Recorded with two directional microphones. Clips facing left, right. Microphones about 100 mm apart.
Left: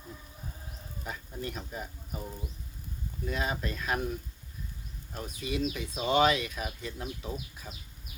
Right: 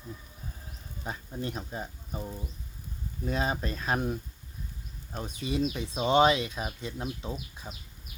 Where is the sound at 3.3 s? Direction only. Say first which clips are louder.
Right 3 dB; 30° right (ahead or behind).